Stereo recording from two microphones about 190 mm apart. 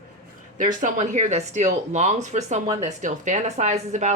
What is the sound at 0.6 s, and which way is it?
Speech, 40° right (ahead or behind).